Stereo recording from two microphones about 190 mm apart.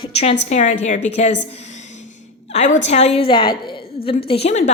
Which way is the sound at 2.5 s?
40° left (ahead or behind).